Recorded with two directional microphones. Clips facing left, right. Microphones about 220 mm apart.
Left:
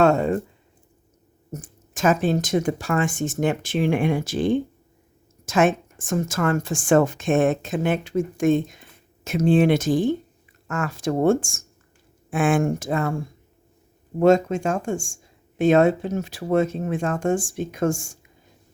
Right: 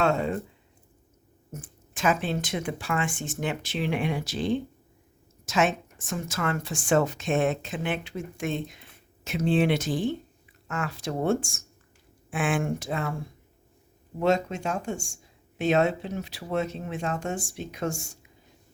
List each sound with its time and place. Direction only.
0.0 s speech: 45° left (ahead or behind)
1.5 s speech: 45° left (ahead or behind)
14.2 s speech: 50° left (ahead or behind)